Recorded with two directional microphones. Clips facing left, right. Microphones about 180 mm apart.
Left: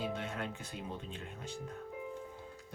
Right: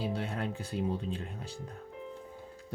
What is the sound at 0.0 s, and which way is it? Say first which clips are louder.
Music: right 4 dB; 35° right (ahead or behind).